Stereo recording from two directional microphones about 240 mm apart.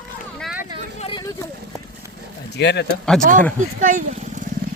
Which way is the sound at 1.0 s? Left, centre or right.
Centre.